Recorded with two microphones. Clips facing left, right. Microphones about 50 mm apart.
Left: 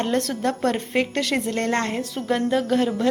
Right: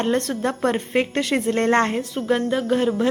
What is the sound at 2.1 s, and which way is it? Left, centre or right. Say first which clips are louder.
Speech: even; centre.